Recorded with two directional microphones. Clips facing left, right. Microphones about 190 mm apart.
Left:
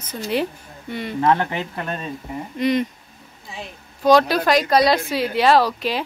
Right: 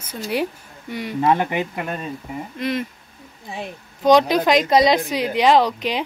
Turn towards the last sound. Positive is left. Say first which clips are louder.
# even
turn(degrees=-20)  # may be behind; listen again after turning